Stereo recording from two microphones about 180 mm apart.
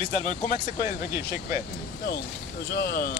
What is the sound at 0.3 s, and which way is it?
Speech, 45° left (ahead or behind).